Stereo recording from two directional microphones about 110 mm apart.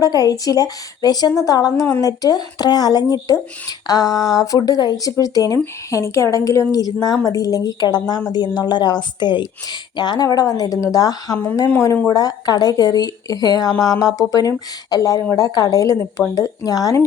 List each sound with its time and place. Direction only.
0.0 s a woman's voice: 35° left (ahead or behind)